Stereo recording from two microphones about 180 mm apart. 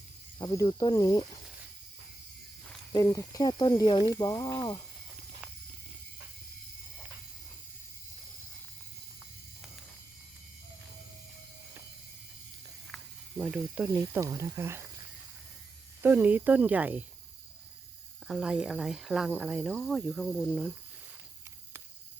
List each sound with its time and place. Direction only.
0.3 s speech: 20° left (ahead or behind)
2.9 s speech: 20° left (ahead or behind)
12.9 s snake: 5° right (ahead or behind)
14.0 s speech: 20° right (ahead or behind)
16.0 s speech: 10° right (ahead or behind)
18.3 s speech: 5° right (ahead or behind)